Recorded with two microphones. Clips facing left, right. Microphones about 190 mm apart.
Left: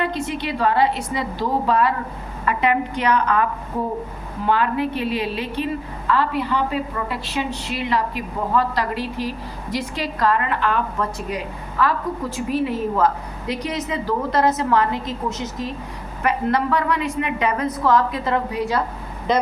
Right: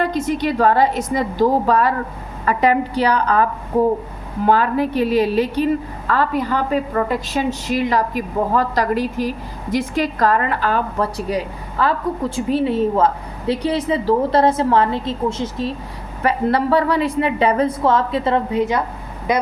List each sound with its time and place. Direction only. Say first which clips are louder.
0.0 s a woman's voice: right 5 dB; 40° right (ahead or behind)
4.4 s a woman's voice: right 4 dB; 40° right (ahead or behind); by 18.8 s 20° right (ahead or behind)